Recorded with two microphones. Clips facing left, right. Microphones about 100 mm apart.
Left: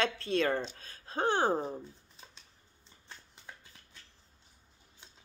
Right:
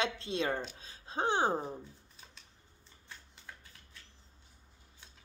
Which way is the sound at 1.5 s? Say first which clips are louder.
Left 3 dB; 15° left (ahead or behind).